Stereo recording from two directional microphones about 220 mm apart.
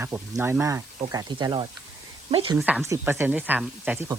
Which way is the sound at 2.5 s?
5° right (ahead or behind).